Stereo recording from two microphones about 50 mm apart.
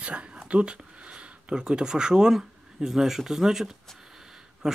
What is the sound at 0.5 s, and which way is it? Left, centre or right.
Speech, right.